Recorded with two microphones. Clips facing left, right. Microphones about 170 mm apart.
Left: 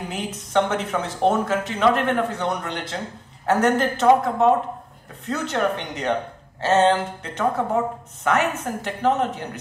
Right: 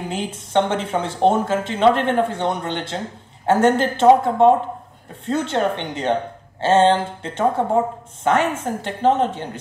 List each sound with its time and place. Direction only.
0.1 s speech: 30° right (ahead or behind)